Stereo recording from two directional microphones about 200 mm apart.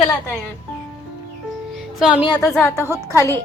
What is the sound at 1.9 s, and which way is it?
Speech, 5° right (ahead or behind).